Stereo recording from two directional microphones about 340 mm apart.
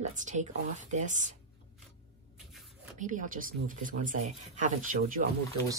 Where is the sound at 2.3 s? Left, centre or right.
Centre.